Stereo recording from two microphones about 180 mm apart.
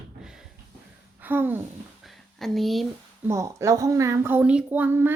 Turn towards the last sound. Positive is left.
turn(degrees=-10)  # may be behind; listen again after turning